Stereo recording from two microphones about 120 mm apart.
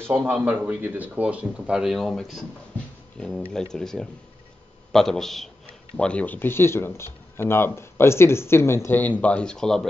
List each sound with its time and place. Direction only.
0.1 s speech: 15° right (ahead or behind); by 9.8 s 5° left (ahead or behind)